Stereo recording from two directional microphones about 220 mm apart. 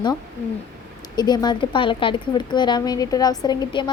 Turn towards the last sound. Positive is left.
turn(degrees=20)  # may be behind; listen again after turning